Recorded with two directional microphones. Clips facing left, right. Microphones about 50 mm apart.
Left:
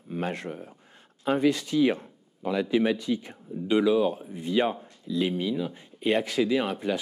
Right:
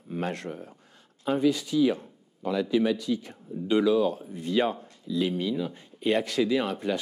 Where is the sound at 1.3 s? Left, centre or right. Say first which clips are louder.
Left 1 dB; left.